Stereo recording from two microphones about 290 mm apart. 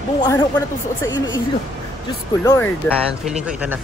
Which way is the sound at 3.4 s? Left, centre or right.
Centre.